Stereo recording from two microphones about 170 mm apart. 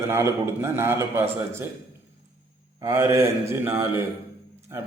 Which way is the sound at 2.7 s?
15° right (ahead or behind).